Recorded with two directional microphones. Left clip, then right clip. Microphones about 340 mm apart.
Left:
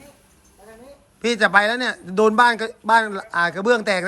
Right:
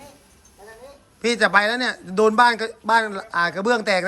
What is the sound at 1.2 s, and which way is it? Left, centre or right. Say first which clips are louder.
A man's voice: left 1 dB; centre.